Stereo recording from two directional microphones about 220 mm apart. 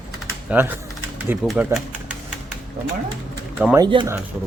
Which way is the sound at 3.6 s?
10° right (ahead or behind).